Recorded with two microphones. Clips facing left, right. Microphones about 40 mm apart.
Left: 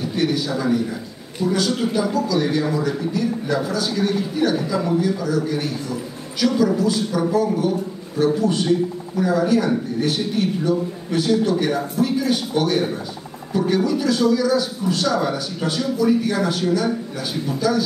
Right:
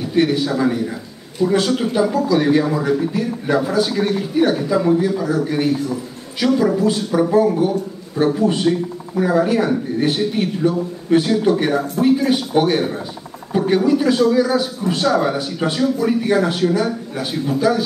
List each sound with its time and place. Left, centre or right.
0.1 s a man's voice: right